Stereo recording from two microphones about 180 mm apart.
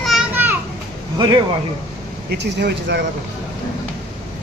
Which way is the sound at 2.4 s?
70° right (ahead or behind).